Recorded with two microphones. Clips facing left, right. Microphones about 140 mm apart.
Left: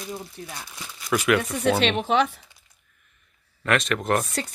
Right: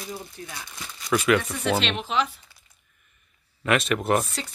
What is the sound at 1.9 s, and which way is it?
Speech, 55° left (ahead or behind).